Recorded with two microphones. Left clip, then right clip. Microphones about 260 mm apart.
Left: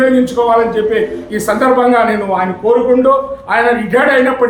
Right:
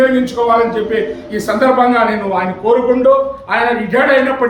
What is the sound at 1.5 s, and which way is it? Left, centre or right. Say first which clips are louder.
A man's voice: left 1 dB; centre.